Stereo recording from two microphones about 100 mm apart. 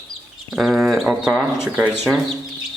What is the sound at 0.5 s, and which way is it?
Speech, 5° right (ahead or behind).